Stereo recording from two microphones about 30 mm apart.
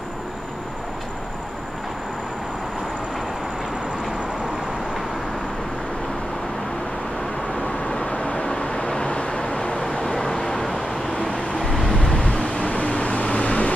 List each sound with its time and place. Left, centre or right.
8.0 s vehicle: left; by 10.8 s centre
11.6 s vehicle: centre
12.0 s vehicle: left